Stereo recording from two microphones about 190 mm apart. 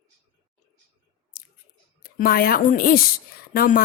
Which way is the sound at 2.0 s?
50° left (ahead or behind).